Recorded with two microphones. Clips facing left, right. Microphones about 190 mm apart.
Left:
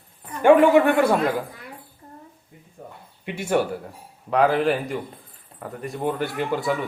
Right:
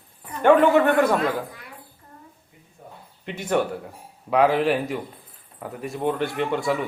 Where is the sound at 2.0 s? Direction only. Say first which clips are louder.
Left 4 dB; 25° left (ahead or behind).